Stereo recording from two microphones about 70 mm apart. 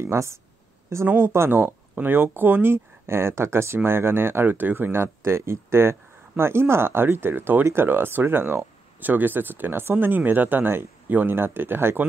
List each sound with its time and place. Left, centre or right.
0.0 s speech: right
1.0 s speech: right
1.3 s speech: right